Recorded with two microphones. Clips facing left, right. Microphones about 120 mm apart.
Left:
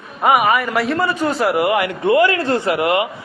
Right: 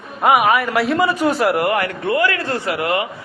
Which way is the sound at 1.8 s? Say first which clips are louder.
Left 4 dB; 20° left (ahead or behind).